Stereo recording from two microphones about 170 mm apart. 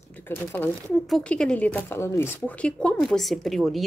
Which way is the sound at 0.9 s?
Centre (ahead or behind).